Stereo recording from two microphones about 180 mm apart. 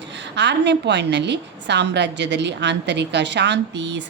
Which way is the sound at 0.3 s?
75° right (ahead or behind).